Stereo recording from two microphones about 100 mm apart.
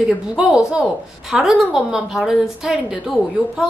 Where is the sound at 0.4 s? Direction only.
5° right (ahead or behind).